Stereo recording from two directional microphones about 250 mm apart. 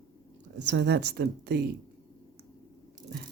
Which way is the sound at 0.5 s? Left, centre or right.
Right.